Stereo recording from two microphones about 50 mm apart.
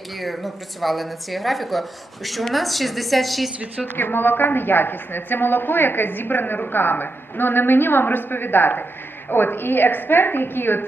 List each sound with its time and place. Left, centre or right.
0.2 s speech: centre
3.9 s a woman's voice: left